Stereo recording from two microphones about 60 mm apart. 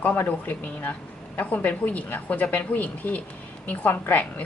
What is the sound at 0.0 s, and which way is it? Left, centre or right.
A woman's voice, left.